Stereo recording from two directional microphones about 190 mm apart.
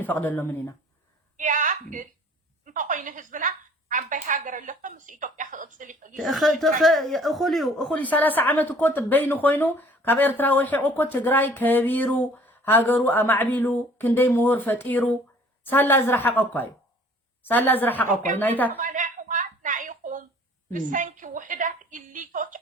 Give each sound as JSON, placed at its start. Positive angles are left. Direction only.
{"t": 0.0, "sound": "speech", "side_deg": 10}
{"t": 1.4, "sound": "a sound", "side_deg": -40}
{"t": 2.6, "sound": "a woman's voice", "side_deg": -45}
{"t": 6.2, "sound": "speech", "side_deg": 0}
{"t": 18.1, "sound": "a woman's voice", "side_deg": -40}
{"t": 18.3, "sound": "speech", "side_deg": 10}
{"t": 18.8, "sound": "a sound", "side_deg": -45}
{"t": 20.7, "sound": "a woman's voice", "side_deg": -40}